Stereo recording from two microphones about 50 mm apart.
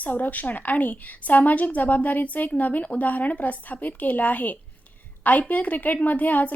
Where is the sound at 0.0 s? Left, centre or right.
Left.